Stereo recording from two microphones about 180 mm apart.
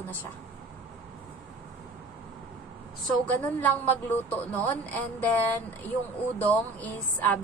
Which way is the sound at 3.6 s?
10° left (ahead or behind).